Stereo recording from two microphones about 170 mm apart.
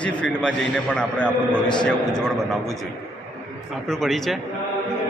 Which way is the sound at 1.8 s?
5° left (ahead or behind).